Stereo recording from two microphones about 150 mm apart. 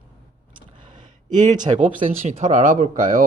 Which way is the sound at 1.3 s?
30° right (ahead or behind).